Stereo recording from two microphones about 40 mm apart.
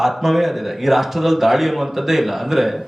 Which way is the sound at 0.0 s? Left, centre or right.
Centre.